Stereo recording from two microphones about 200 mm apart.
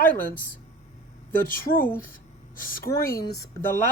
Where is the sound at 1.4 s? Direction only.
45° left (ahead or behind).